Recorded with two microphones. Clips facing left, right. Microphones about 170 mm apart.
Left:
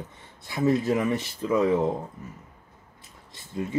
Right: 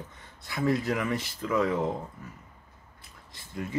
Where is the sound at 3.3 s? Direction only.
25° left (ahead or behind).